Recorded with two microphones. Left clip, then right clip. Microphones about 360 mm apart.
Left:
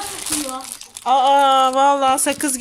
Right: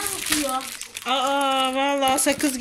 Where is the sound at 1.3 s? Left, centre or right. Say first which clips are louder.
Left 8 dB; left.